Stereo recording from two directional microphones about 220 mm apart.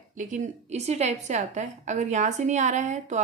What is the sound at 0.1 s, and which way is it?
A woman's voice, 35° right (ahead or behind).